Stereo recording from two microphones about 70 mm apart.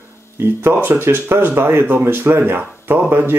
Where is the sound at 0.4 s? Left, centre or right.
Right.